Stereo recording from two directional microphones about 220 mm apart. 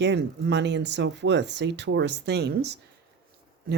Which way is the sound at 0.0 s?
50° right (ahead or behind).